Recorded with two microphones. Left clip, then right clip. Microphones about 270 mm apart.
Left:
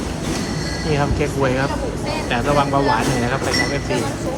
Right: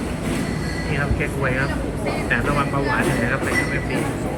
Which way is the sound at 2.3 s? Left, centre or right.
Centre.